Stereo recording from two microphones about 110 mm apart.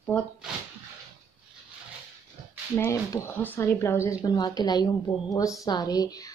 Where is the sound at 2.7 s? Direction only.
25° left (ahead or behind).